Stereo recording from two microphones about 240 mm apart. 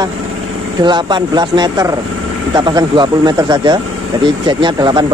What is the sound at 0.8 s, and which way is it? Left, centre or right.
Speech, centre.